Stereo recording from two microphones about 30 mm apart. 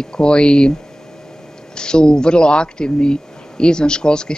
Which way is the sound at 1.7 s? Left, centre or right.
Left.